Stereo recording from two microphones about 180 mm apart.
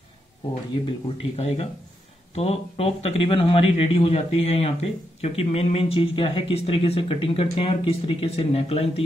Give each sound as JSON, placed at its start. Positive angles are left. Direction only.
{"t": 1.0, "sound": "speech", "side_deg": 35}